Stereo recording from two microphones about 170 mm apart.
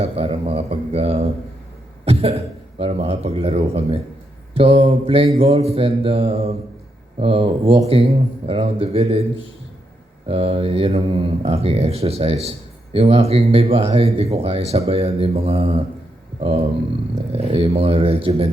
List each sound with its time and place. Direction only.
0.0 s speech: 35° right (ahead or behind)
10.2 s speech: 35° right (ahead or behind)